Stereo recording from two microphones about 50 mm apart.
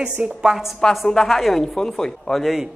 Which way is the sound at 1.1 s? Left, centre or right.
Centre.